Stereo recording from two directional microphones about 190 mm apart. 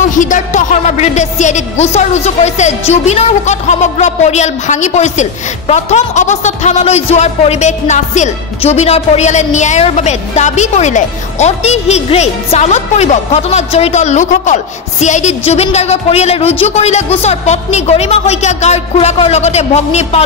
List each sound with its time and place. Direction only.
0.1 s speech: 40° left (ahead or behind)